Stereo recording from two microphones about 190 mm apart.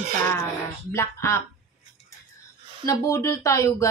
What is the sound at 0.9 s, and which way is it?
Speech, 15° left (ahead or behind).